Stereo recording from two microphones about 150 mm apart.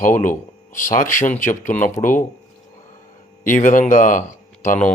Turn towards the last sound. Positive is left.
turn(degrees=60)  # may be behind; listen again after turning